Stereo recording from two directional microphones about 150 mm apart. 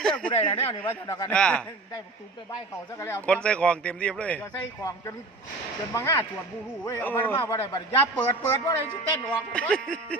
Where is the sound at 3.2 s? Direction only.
5° left (ahead or behind).